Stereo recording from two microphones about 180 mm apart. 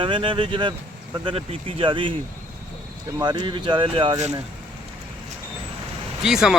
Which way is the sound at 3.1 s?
25° right (ahead or behind).